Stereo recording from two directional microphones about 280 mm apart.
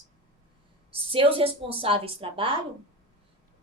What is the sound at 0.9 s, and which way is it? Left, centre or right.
A woman's voice, centre.